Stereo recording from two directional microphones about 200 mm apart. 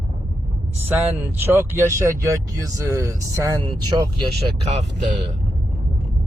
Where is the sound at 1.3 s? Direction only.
10° right (ahead or behind).